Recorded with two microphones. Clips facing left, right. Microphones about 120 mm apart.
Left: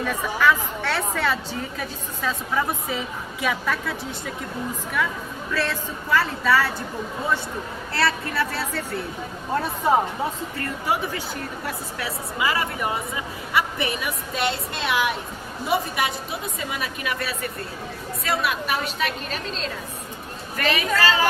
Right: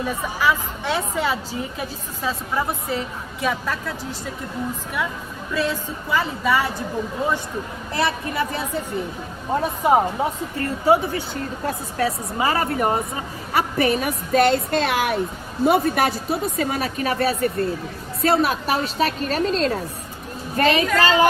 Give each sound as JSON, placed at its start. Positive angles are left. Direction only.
{"t": 0.0, "sound": "speech", "side_deg": -10}
{"t": 2.9, "sound": "a woman's voice", "side_deg": 0}
{"t": 5.5, "sound": "speech", "side_deg": -15}
{"t": 7.9, "sound": "speech", "side_deg": -20}
{"t": 10.6, "sound": "a woman's voice", "side_deg": -30}
{"t": 20.5, "sound": "a woman's voice", "side_deg": -30}